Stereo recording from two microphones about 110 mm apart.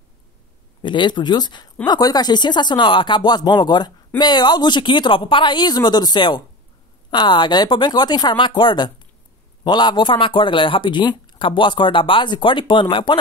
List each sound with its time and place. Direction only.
0.8 s speech: 45° left (ahead or behind)